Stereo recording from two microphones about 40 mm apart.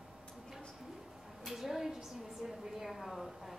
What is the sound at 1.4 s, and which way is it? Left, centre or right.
A woman's voice, centre.